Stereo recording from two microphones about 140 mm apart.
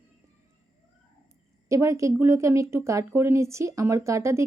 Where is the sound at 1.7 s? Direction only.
20° right (ahead or behind).